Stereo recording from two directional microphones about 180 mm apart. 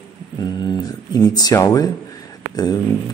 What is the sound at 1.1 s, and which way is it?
Speech, 20° left (ahead or behind).